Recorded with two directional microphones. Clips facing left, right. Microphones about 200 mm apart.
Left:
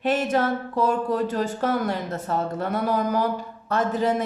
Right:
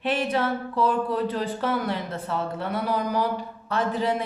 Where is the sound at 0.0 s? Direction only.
45° left (ahead or behind).